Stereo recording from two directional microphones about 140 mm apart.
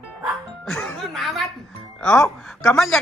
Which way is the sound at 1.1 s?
Centre (ahead or behind).